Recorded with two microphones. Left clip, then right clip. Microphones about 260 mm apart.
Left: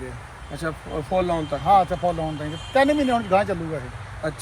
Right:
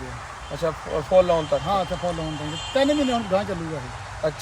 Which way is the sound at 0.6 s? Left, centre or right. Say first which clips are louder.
Right 4 dB; centre.